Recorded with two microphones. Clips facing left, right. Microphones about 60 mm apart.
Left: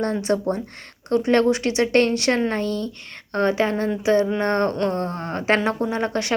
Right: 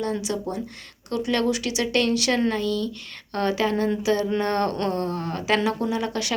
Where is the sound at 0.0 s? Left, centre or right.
Left.